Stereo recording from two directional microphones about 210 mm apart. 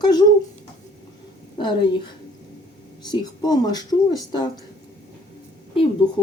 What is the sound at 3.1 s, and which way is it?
A woman's voice, 20° left (ahead or behind).